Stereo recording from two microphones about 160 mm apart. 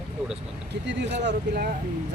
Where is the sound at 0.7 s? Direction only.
90° right.